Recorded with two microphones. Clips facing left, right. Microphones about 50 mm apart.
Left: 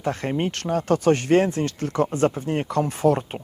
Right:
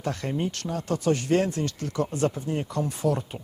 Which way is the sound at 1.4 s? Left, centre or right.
Left.